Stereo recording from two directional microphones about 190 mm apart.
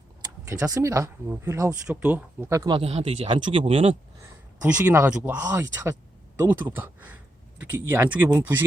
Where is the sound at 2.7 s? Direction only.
30° right (ahead or behind).